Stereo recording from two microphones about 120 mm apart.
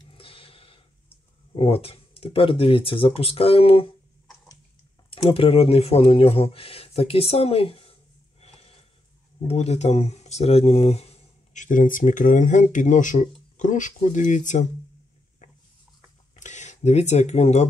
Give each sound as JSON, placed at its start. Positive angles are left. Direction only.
{"t": 0.1, "sound": "a sound", "side_deg": 50}
{"t": 1.5, "sound": "speech", "side_deg": 50}
{"t": 5.1, "sound": "speech", "side_deg": 50}
{"t": 8.4, "sound": "a sound", "side_deg": 60}
{"t": 9.5, "sound": "speech", "side_deg": 65}
{"t": 16.3, "sound": "speech", "side_deg": 85}